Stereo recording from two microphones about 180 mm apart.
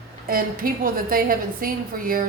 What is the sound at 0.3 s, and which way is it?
A woman's voice, 50° right (ahead or behind).